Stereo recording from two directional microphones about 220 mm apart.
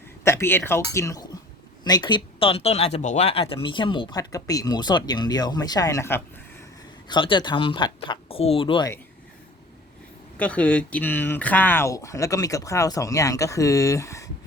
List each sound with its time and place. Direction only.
0.3 s speech: 10° left (ahead or behind)
7.1 s speech: 20° left (ahead or behind)
10.3 s speech: 5° left (ahead or behind)